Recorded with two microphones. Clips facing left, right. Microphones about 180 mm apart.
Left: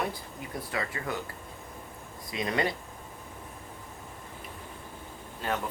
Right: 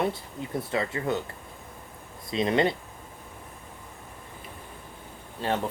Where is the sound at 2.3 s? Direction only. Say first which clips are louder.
Right 6 dB; 25° right (ahead or behind).